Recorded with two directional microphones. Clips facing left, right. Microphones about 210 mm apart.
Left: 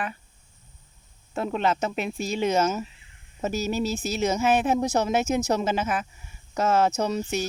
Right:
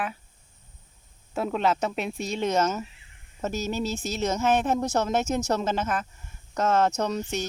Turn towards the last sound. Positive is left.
turn(degrees=5)  # may be behind; listen again after turning